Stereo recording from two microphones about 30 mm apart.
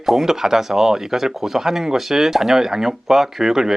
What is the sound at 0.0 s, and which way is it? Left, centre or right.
Speech, centre.